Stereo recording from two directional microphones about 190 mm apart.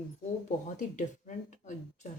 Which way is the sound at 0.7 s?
40° left (ahead or behind).